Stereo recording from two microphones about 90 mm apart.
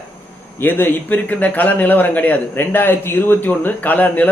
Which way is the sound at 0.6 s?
20° left (ahead or behind).